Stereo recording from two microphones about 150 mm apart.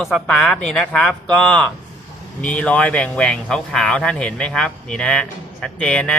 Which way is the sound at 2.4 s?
10° left (ahead or behind).